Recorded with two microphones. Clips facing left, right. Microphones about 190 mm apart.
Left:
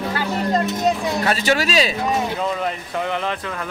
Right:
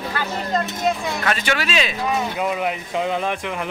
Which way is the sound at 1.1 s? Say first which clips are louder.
Left 3 dB; 35° left (ahead or behind).